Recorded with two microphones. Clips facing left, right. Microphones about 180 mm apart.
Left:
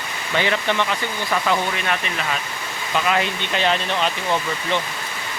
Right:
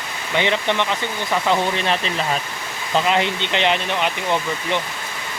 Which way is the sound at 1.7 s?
30° right (ahead or behind).